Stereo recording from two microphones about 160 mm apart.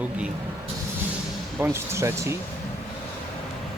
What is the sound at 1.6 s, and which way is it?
Speech, 15° right (ahead or behind).